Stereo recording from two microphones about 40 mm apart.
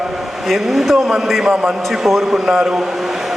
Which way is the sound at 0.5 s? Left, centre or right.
Centre.